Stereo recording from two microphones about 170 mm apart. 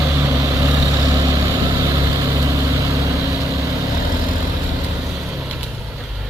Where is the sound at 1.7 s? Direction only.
20° right (ahead or behind).